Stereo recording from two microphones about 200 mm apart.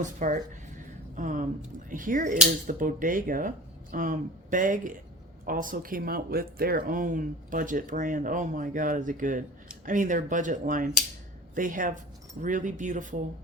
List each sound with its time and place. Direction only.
0.0 s a woman's voice: 40° right (ahead or behind)